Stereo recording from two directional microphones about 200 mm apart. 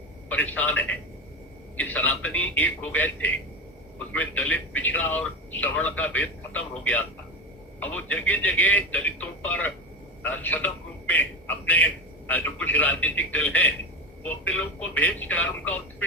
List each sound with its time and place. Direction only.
0.3 s a man's voice: 10° left (ahead or behind)